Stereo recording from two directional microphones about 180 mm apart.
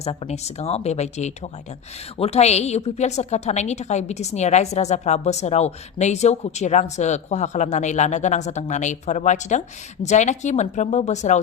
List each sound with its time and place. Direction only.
0.0 s a woman's voice: 35° left (ahead or behind)